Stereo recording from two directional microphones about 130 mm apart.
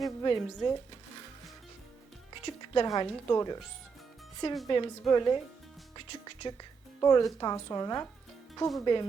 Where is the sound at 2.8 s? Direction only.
25° left (ahead or behind).